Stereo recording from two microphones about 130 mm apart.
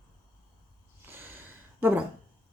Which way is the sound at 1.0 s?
15° right (ahead or behind).